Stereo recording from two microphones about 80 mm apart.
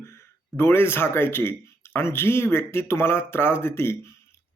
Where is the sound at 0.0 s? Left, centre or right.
Left.